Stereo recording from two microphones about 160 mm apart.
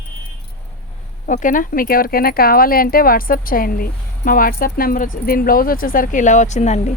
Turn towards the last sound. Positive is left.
turn(degrees=45)  # may be behind; listen again after turning